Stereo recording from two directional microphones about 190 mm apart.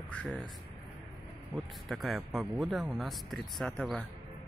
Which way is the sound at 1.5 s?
Centre (ahead or behind).